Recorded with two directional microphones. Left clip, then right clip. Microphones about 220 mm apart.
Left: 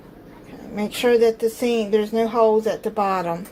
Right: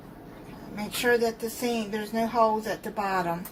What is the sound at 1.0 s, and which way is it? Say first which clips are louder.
Speech: left 8 dB; 30° left (ahead or behind).